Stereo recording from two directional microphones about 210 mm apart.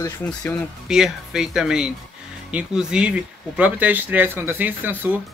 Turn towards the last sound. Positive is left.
turn(degrees=-10)  # may be behind; listen again after turning